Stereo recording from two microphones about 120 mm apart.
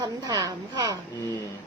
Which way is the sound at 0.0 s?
30° right (ahead or behind).